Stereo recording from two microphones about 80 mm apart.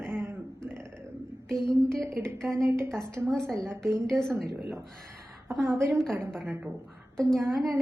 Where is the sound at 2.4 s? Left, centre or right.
Right.